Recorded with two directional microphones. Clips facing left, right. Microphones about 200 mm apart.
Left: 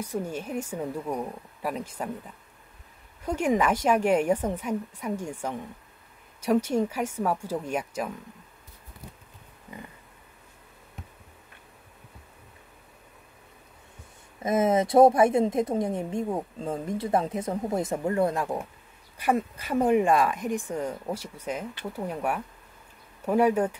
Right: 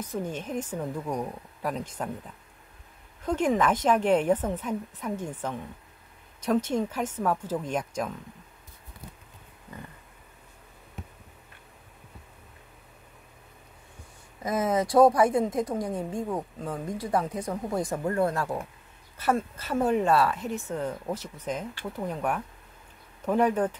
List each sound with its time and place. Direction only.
0.0 s speech: 10° left (ahead or behind)
3.3 s speech: 10° left (ahead or behind)
14.4 s speech: 25° left (ahead or behind)